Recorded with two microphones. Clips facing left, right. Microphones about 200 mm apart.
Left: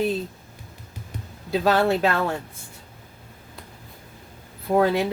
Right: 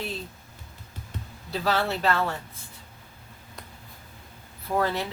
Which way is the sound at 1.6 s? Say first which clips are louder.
Left 5 dB; 50° left (ahead or behind).